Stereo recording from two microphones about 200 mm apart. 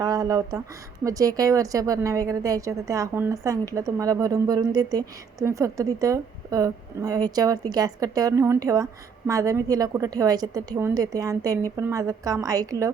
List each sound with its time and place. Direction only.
0.0 s a woman's voice: 15° right (ahead or behind)